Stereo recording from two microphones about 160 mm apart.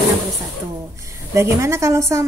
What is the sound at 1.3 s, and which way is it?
Speech, 15° right (ahead or behind).